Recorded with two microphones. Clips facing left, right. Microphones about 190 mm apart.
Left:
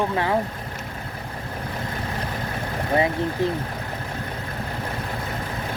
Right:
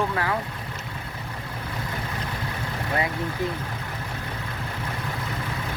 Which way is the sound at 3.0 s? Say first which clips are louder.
Left 6 dB; 25° left (ahead or behind).